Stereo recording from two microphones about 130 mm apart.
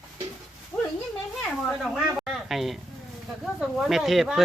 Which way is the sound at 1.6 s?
Centre (ahead or behind).